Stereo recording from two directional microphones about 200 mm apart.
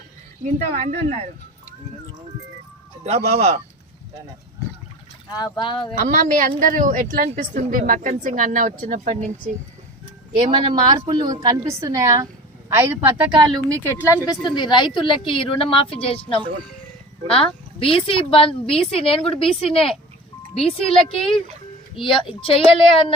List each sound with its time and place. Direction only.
0.4 s a woman's voice: 40° right (ahead or behind)
3.0 s a woman's voice: 30° right (ahead or behind)
5.3 s a woman's voice: 20° left (ahead or behind)
6.0 s a woman's voice: 40° right (ahead or behind)
10.3 s a woman's voice: 20° right (ahead or behind)
14.3 s a woman's voice: 20° left (ahead or behind)
17.2 s a woman's voice: 25° left (ahead or behind)